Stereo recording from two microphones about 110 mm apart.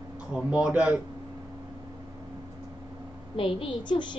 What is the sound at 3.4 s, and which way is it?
Speech, 50° left (ahead or behind).